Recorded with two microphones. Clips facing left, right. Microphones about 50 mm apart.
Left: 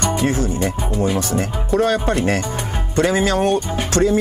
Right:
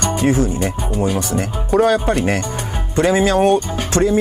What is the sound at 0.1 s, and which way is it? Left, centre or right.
Speech, right.